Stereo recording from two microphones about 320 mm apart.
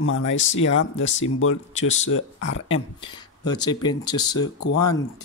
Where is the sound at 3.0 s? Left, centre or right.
Centre.